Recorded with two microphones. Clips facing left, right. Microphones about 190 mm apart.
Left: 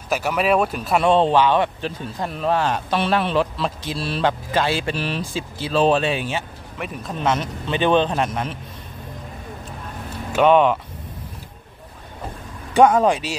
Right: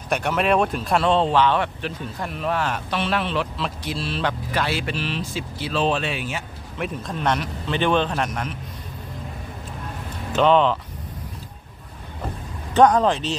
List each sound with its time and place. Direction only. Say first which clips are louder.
0.1 s speech: left 1 dB; 5° left (ahead or behind)
1.0 s speech: left 3 dB; 15° left (ahead or behind)
2.2 s speech: left 4 dB; 35° left (ahead or behind)
2.9 s speech: left 5 dB; 40° left (ahead or behind)
4.1 s a man's voice: left 6 dB; 30° left (ahead or behind)
4.9 s speech: left 2 dB; 45° left (ahead or behind); by 6.4 s 25° left (ahead or behind)
6.8 s speech: even; 5° left (ahead or behind)
7.3 s a man's voice: left 1 dB; 15° left (ahead or behind)
10.3 s speech: left 2 dB; 15° left (ahead or behind)
12.7 s speech: left 1 dB; 10° left (ahead or behind)